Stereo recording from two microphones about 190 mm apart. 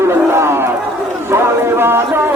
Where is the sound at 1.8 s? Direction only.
10° right (ahead or behind).